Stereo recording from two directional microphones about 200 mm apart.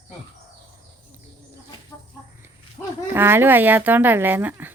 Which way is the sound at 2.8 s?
20° left (ahead or behind).